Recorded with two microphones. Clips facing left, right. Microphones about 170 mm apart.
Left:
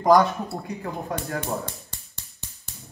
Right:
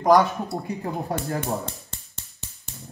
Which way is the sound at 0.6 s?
35° right (ahead or behind).